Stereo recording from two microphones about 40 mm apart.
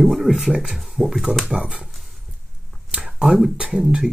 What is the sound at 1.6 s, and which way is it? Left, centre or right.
Speech, right.